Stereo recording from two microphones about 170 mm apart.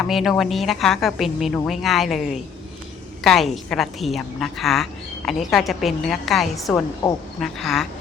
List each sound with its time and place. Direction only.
0.0 s a woman's voice: centre (ahead or behind)